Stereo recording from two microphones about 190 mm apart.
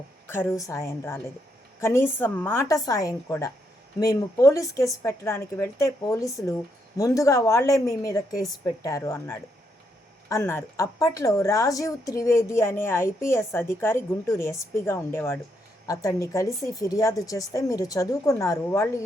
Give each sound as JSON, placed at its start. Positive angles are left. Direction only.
{"t": 0.3, "sound": "speech", "side_deg": 15}